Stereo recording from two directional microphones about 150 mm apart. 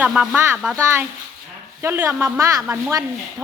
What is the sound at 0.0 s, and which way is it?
Speech, 5° right (ahead or behind).